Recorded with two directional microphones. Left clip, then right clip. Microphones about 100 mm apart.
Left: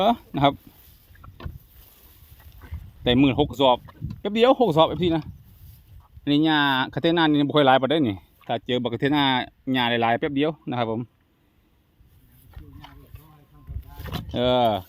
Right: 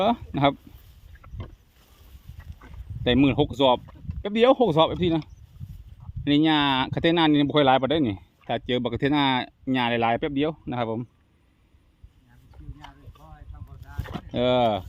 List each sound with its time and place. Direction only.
0.0 s speech: 35° left (ahead or behind)
1.4 s vehicle: 60° left (ahead or behind)
2.4 s a sound: 30° left (ahead or behind)
4.2 s speech: 25° left (ahead or behind)
6.2 s speech: 15° left (ahead or behind)
7.4 s speech: 35° left (ahead or behind)
8.4 s speech: 20° left (ahead or behind)
10.2 s speech: 40° left (ahead or behind)
12.8 s a sound: 25° left (ahead or behind)
14.1 s a sound: 90° left
14.3 s speech: 25° left (ahead or behind)